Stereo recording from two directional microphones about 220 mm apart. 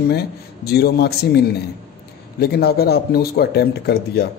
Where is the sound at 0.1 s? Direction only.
45° left (ahead or behind).